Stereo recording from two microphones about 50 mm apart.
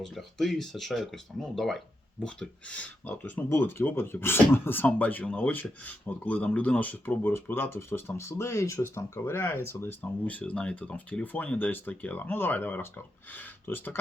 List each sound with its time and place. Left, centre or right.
0.0 s speech: centre
2.2 s speech: centre
2.7 s speech: left
10.0 s speech: left